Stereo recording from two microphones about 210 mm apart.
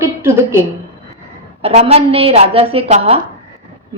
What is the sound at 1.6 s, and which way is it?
A woman's voice, 30° right (ahead or behind).